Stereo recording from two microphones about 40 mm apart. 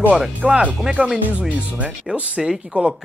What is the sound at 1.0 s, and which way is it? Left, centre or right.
Speech, right.